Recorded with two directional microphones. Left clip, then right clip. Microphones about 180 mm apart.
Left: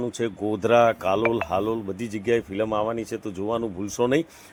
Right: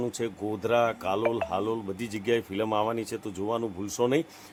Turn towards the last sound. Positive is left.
turn(degrees=15)  # may be behind; listen again after turning